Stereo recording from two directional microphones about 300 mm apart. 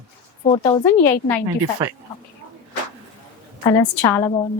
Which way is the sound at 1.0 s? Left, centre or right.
Centre.